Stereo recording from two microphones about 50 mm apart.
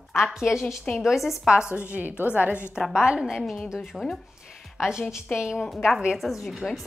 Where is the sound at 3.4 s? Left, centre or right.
Centre.